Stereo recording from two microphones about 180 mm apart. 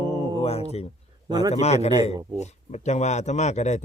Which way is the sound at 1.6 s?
35° left (ahead or behind).